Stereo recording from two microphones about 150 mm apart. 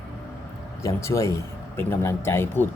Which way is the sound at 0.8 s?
20° left (ahead or behind).